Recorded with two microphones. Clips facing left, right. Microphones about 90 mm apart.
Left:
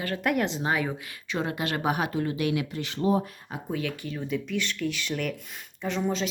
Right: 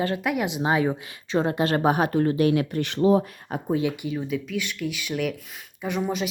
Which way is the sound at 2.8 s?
80° right.